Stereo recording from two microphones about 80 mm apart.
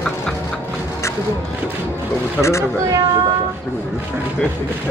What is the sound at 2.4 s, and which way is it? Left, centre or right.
Speech, left.